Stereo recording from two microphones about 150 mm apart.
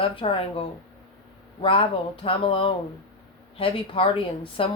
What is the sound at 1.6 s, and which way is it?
Speech, 35° left (ahead or behind).